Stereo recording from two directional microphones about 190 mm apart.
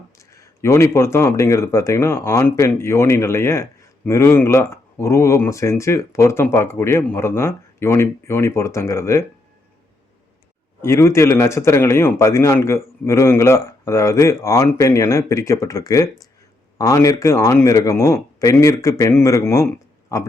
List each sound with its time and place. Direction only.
0.2 s speech: 15° left (ahead or behind)
10.8 s speech: 15° left (ahead or behind)